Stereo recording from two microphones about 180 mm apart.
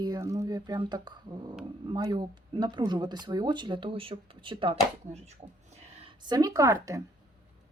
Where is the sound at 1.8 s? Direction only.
25° right (ahead or behind).